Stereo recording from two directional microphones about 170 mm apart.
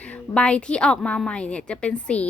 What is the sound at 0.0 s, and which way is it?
A woman's voice, 5° left (ahead or behind).